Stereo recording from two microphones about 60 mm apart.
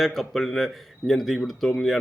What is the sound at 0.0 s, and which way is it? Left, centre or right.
A man's voice, centre.